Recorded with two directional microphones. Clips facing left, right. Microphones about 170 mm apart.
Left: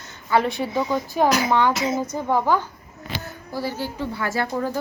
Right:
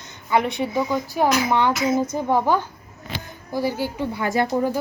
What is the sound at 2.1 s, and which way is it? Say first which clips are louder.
A woman's voice: right 1 dB; 15° right (ahead or behind).